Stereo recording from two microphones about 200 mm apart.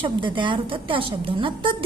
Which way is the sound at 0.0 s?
25° right (ahead or behind).